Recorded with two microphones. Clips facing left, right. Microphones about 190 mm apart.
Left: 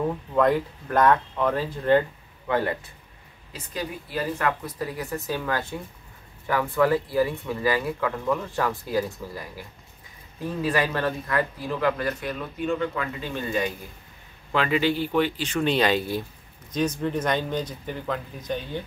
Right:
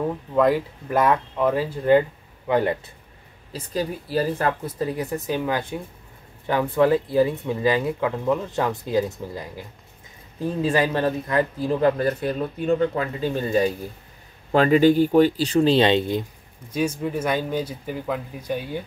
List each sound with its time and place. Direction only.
0.1 s speech: 5° right (ahead or behind); by 2.8 s 20° right (ahead or behind)
3.5 s speech: 35° right (ahead or behind)
16.7 s speech: 10° right (ahead or behind)